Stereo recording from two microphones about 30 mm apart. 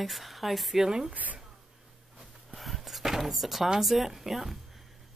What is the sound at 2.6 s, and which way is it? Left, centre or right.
Chopping, centre.